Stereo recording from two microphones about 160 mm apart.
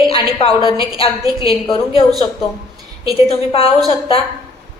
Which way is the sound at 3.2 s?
35° left (ahead or behind).